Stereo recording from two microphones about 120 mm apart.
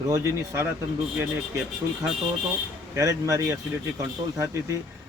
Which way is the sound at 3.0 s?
25° right (ahead or behind).